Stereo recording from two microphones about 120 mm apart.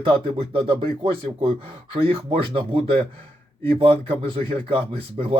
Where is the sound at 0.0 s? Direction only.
50° right (ahead or behind).